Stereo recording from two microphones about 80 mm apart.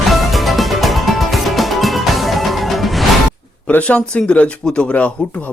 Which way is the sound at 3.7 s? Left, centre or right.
Centre.